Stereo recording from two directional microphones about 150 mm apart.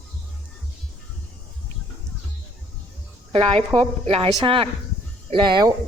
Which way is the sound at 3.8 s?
40° right (ahead or behind).